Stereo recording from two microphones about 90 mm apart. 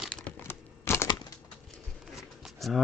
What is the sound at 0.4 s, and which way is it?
Crumpling, 30° left (ahead or behind).